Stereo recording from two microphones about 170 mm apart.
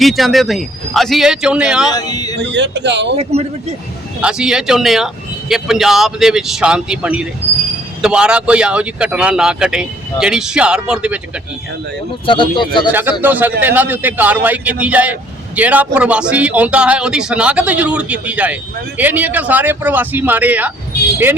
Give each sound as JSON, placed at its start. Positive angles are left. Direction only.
{"t": 0.0, "sound": "a man's voice", "side_deg": 0}
{"t": 1.9, "sound": "speech", "side_deg": 20}
{"t": 2.4, "sound": "speech", "side_deg": -90}
{"t": 3.2, "sound": "a man's voice", "side_deg": -40}
{"t": 4.2, "sound": "a man's voice", "side_deg": -5}
{"t": 12.2, "sound": "speech", "side_deg": 30}
{"t": 12.9, "sound": "speech", "side_deg": -10}